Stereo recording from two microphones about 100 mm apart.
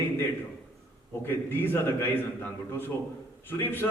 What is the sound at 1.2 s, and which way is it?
A man's voice, 20° left (ahead or behind).